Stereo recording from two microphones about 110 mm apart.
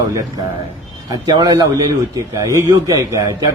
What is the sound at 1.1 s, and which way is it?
A man's voice, 40° right (ahead or behind).